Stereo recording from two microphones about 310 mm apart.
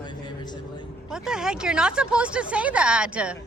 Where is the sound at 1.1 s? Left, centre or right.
Centre.